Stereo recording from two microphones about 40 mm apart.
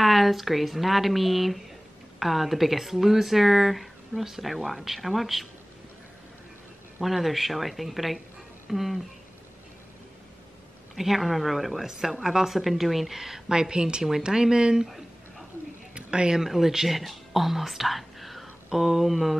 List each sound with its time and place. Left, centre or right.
0.0 s speech: centre
7.0 s speech: centre
11.0 s speech: centre
15.9 s a sound: right
16.3 s speech: centre